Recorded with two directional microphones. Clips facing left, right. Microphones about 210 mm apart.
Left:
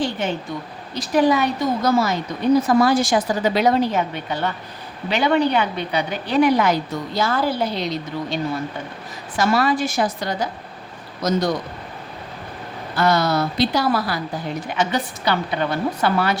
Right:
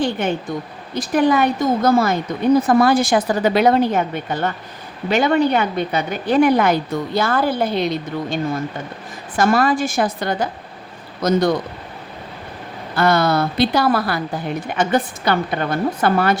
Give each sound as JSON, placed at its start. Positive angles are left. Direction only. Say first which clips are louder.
{"t": 0.0, "sound": "a sound", "louder": "right 3 dB", "side_deg": -55}
{"t": 0.9, "sound": "a woman's voice", "louder": "right 1 dB", "side_deg": -50}
{"t": 13.0, "sound": "a woman's voice", "louder": "right 2 dB", "side_deg": -55}